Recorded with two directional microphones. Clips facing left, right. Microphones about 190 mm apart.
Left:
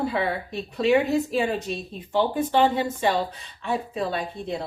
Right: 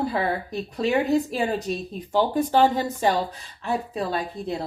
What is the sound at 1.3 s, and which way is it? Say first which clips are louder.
A woman's voice: even; 40° right (ahead or behind).